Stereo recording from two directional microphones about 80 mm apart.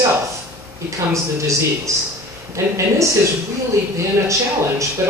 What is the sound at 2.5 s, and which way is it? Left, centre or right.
Speech, right.